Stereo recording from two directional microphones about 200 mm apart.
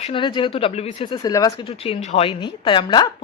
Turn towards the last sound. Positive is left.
turn(degrees=20)  # may be behind; listen again after turning